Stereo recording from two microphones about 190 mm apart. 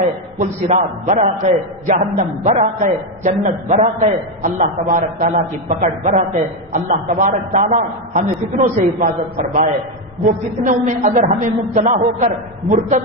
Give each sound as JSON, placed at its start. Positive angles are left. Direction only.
{"t": 0.0, "sound": "a man's voice", "side_deg": -40}